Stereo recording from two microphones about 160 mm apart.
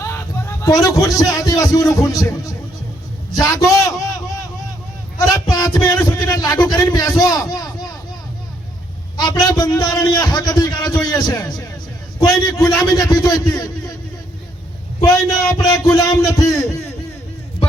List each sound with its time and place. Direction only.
0.0 s a man's voice: 15° left (ahead or behind)
5.3 s speech: 20° left (ahead or behind)
9.1 s a man's voice: 25° left (ahead or behind)
15.0 s a man's voice: 20° left (ahead or behind)